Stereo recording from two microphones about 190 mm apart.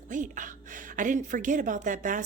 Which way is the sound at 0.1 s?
40° right (ahead or behind).